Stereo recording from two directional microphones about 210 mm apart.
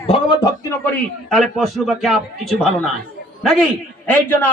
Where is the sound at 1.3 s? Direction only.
Centre (ahead or behind).